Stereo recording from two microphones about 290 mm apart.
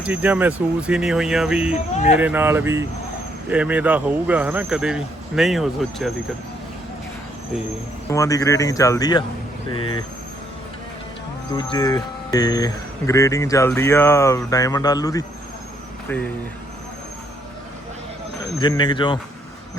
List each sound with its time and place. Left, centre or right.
0.0 s speech: centre
8.1 s speech: centre
11.5 s speech: centre
18.6 s speech: centre